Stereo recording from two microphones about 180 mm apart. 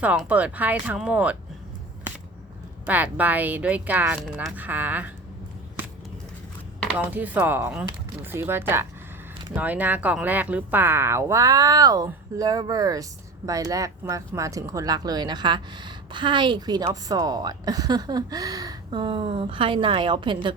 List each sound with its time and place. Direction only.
0.0 s speech: 10° right (ahead or behind)
2.8 s speech: 10° right (ahead or behind)
7.0 s speech: 10° right (ahead or behind); by 20.5 s 25° right (ahead or behind)